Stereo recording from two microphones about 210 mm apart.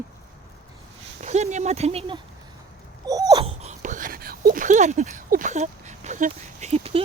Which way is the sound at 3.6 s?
35° right (ahead or behind).